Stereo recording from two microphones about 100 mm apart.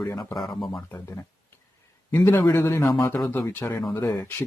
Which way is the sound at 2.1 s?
20° left (ahead or behind).